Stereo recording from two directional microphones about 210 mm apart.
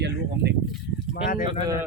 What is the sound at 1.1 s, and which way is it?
Speech, 40° left (ahead or behind).